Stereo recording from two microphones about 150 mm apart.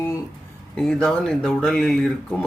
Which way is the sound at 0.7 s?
5° left (ahead or behind).